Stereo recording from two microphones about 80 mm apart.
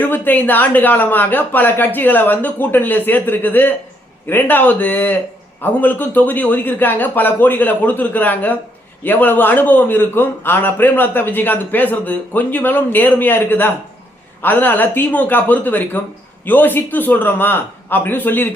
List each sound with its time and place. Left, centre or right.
0.0 s a man's voice: left